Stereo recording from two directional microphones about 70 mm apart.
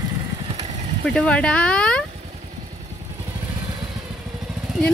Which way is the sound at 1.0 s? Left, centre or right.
Centre.